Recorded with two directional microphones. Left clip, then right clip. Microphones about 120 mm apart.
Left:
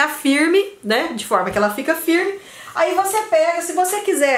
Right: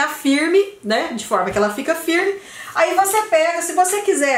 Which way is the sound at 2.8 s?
Centre (ahead or behind).